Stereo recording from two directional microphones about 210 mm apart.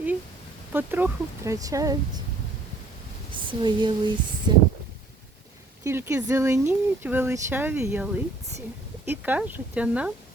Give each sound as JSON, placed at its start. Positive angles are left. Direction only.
{"t": 0.7, "sound": "speech", "side_deg": -10}
{"t": 3.3, "sound": "speech", "side_deg": -20}
{"t": 5.8, "sound": "speech", "side_deg": -10}